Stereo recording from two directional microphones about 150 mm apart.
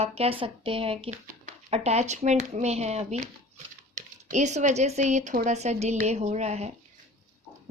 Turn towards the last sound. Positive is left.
turn(degrees=-45)  # may be behind; listen again after turning